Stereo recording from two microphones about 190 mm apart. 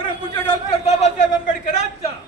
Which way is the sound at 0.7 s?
35° left (ahead or behind).